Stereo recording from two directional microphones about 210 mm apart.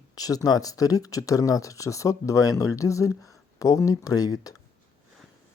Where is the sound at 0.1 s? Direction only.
15° left (ahead or behind).